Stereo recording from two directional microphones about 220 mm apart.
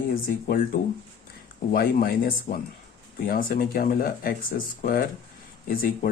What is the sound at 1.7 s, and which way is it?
Speech, 40° left (ahead or behind).